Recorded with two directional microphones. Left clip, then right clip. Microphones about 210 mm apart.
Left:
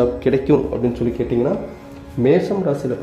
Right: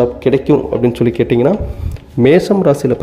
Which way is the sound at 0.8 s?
35° right (ahead or behind).